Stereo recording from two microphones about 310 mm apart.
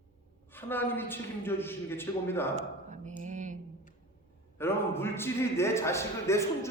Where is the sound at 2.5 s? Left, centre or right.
Right.